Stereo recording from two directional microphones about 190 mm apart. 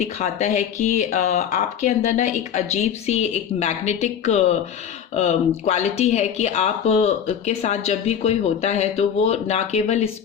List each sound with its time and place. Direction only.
0.0 s speech: 35° left (ahead or behind)